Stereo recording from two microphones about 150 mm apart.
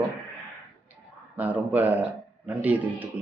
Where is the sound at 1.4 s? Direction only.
10° right (ahead or behind).